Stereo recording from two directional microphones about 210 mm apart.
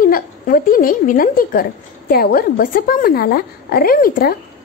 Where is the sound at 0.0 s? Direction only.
40° left (ahead or behind).